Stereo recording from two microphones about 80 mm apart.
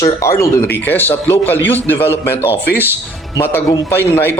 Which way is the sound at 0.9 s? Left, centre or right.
Left.